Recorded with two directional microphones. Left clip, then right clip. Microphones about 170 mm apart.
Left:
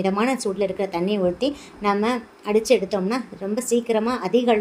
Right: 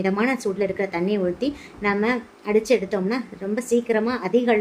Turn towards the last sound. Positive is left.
turn(degrees=20)  # may be behind; listen again after turning